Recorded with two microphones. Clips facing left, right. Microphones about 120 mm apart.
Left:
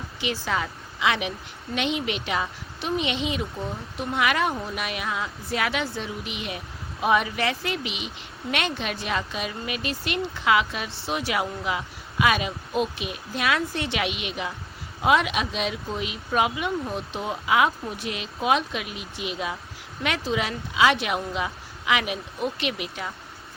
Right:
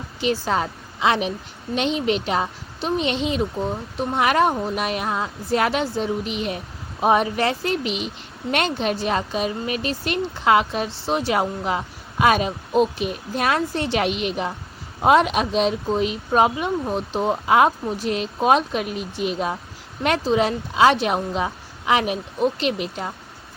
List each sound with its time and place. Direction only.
0.2 s speech: 35° right (ahead or behind)